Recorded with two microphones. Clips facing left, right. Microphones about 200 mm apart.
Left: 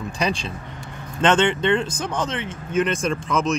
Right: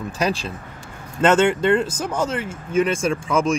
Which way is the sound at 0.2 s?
5° right (ahead or behind).